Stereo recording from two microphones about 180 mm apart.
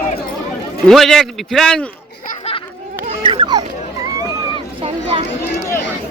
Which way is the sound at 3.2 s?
30° right (ahead or behind).